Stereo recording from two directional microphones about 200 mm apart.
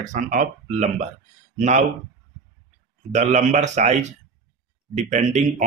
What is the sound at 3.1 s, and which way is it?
Speech, 35° right (ahead or behind).